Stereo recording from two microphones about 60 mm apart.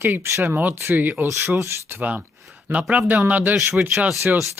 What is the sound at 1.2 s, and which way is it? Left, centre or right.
Speech, right.